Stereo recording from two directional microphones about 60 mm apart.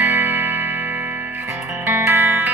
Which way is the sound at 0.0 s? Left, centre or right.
Right.